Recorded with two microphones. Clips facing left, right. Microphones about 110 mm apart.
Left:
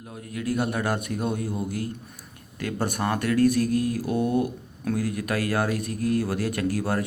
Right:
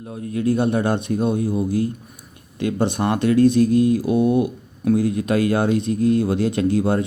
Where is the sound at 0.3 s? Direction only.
25° right (ahead or behind).